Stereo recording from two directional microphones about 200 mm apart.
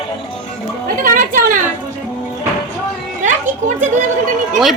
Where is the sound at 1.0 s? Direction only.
45° right (ahead or behind).